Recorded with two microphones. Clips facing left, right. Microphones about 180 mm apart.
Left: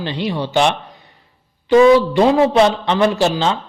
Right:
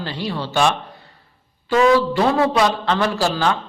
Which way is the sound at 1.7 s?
20° left (ahead or behind).